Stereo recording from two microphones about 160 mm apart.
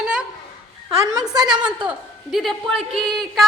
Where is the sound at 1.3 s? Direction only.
25° right (ahead or behind).